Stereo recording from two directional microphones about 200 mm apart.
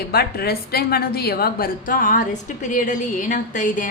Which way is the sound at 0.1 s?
50° left (ahead or behind).